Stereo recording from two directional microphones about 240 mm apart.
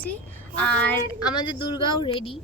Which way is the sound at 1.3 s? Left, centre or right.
Centre.